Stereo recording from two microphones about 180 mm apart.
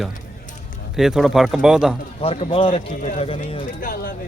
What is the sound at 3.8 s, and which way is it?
Speech, 55° left (ahead or behind).